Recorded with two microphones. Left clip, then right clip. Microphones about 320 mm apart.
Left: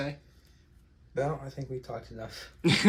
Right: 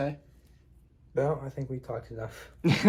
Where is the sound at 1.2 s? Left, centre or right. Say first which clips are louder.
Right 3 dB; right.